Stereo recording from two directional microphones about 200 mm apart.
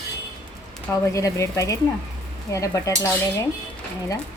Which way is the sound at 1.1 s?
15° left (ahead or behind).